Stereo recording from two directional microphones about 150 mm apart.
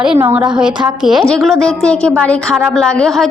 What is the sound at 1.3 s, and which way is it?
A woman's voice, 5° left (ahead or behind).